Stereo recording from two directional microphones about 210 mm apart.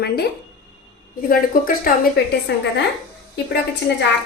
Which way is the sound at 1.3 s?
45° left (ahead or behind).